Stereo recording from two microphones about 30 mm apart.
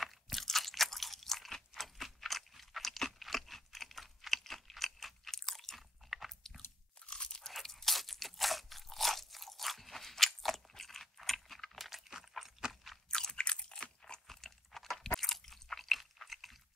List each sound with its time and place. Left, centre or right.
0.0 s crunch: centre
1.8 s a sound: centre
4.3 s chewing: centre
5.3 s crunch: centre
6.0 s chewing: centre
7.1 s crunch: left
7.6 s crunch: centre
10.8 s gears: centre
12.6 s crunch: centre
13.1 s crunch: centre
13.4 s crunch: left
14.2 s chewing: centre
15.0 s crunch: centre
15.5 s chewing: centre